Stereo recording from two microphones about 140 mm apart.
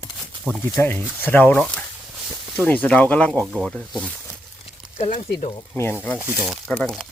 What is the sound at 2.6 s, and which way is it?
Speech, 10° left (ahead or behind).